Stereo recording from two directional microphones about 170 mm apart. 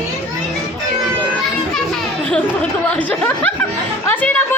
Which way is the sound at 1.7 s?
5° left (ahead or behind).